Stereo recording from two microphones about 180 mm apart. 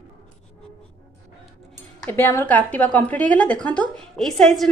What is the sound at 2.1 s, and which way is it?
A woman's voice, 10° left (ahead or behind).